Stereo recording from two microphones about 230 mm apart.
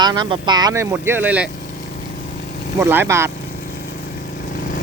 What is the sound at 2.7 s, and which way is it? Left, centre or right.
Speech, centre.